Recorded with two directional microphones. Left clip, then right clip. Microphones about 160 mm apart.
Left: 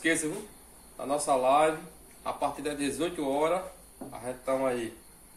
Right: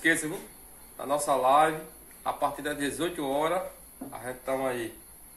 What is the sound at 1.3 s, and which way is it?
Speech, 15° left (ahead or behind).